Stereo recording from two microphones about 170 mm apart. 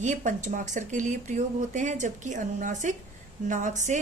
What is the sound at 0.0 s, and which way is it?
Speech, 45° right (ahead or behind).